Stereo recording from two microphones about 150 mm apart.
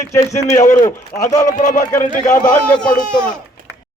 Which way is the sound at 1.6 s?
55° left (ahead or behind).